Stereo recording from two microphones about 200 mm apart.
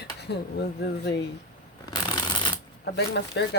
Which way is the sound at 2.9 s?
60° left (ahead or behind).